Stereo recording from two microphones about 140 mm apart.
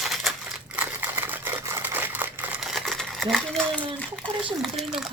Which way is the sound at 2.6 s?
Centre (ahead or behind).